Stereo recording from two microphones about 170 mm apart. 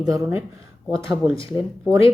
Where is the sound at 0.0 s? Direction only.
15° right (ahead or behind).